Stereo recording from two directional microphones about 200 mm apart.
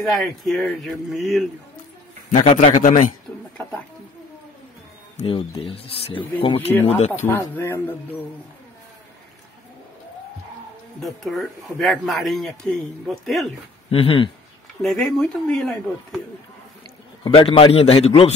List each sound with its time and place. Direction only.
0.0 s speech: centre (ahead or behind)
2.4 s a man's voice: 40° left (ahead or behind)
5.1 s speech: 25° left (ahead or behind)
6.7 s speech: 10° left (ahead or behind)
11.0 s speech: centre (ahead or behind)
13.8 s speech: 30° left (ahead or behind)
14.8 s speech: centre (ahead or behind)
17.2 s speech: 25° left (ahead or behind)